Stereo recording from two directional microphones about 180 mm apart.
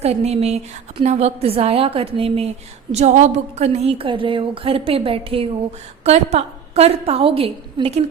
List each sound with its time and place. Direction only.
0.0 s a woman's voice: 35° right (ahead or behind)